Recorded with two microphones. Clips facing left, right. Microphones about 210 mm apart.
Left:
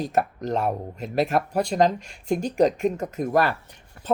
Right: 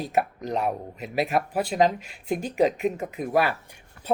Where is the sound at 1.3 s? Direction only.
5° right (ahead or behind).